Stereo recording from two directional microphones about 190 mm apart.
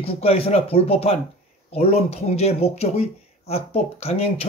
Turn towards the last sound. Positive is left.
turn(degrees=30)  # may be behind; listen again after turning